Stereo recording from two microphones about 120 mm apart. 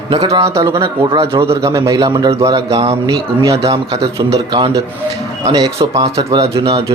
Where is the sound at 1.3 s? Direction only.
50° right (ahead or behind).